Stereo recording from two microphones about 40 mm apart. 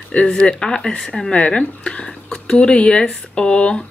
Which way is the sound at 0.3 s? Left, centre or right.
Centre.